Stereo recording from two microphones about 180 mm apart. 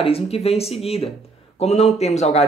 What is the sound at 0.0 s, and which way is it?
Speech, 35° left (ahead or behind).